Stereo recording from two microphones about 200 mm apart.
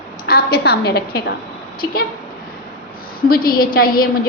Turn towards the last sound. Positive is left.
turn(degrees=45)  # may be behind; listen again after turning